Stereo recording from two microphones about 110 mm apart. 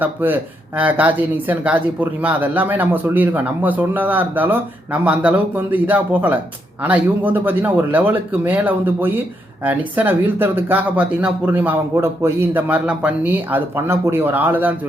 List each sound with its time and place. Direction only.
0.0 s speech: 15° right (ahead or behind)